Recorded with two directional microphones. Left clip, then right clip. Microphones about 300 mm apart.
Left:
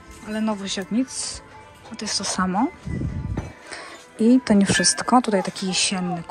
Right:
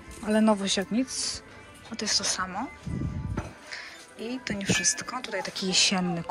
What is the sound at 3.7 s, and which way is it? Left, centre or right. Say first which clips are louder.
Speech: left 9 dB; centre.